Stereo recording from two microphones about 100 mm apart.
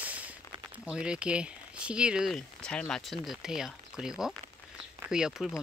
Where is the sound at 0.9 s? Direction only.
10° right (ahead or behind).